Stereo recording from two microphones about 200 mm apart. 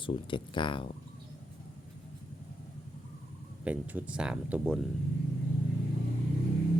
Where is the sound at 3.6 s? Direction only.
5° right (ahead or behind).